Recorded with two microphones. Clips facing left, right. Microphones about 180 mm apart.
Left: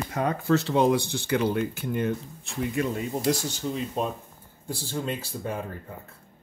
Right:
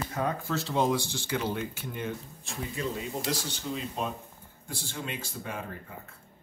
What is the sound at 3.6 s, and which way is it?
Speech, 45° left (ahead or behind).